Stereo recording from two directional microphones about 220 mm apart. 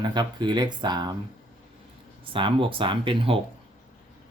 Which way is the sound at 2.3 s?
25° right (ahead or behind).